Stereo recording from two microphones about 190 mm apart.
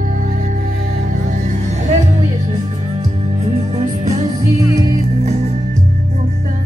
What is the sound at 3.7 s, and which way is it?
Music, 35° right (ahead or behind).